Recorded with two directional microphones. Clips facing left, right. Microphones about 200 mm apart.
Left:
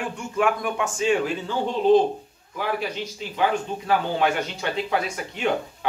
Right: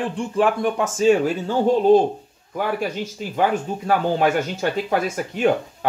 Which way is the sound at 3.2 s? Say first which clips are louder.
Right 3 dB; 45° right (ahead or behind).